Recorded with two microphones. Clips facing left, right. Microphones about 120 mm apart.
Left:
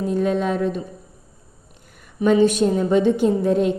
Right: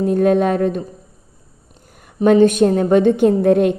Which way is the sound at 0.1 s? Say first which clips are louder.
Right 6 dB; 55° right (ahead or behind).